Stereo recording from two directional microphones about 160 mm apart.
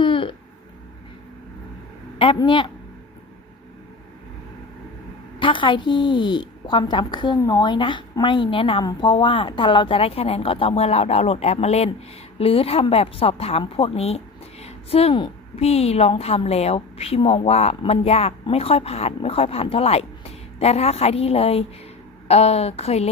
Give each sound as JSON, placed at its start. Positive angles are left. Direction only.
{"t": 0.0, "sound": "a sound", "side_deg": 35}
{"t": 2.1, "sound": "a woman's voice", "side_deg": 35}
{"t": 5.4, "sound": "a woman's voice", "side_deg": 30}